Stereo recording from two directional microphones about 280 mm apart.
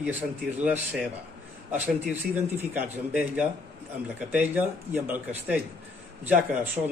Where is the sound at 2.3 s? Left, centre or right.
Centre.